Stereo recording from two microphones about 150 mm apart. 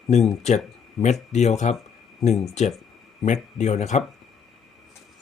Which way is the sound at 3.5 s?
50° left (ahead or behind).